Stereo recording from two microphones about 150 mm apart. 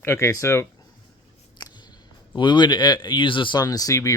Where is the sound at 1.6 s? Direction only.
30° left (ahead or behind).